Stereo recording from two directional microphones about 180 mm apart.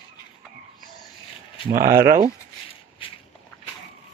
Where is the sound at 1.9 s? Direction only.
20° right (ahead or behind).